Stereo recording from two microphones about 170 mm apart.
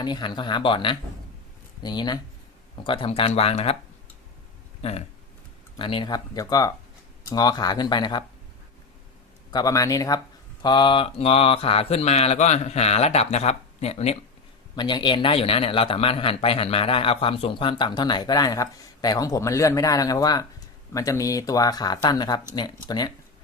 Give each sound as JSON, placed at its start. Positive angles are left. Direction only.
{"t": 0.0, "sound": "a man's voice", "side_deg": 25}
{"t": 2.8, "sound": "mantra", "side_deg": 30}
{"t": 4.8, "sound": "a man's voice", "side_deg": 40}
{"t": 9.5, "sound": "a man's voice", "side_deg": 25}
{"t": 10.6, "sound": "mantra", "side_deg": 25}
{"t": 14.8, "sound": "a man's voice", "side_deg": 25}